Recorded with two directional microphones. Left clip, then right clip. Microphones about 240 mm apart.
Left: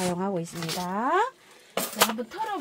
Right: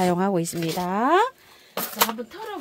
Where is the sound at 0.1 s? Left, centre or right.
Right.